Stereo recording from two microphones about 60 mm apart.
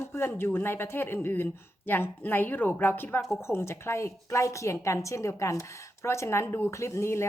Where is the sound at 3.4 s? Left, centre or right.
Left.